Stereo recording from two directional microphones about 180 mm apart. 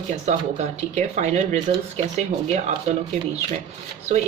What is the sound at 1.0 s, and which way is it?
Speech, 40° right (ahead or behind).